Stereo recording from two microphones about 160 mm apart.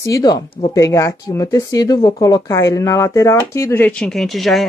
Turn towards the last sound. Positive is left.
turn(degrees=0)  # may be behind; listen again after turning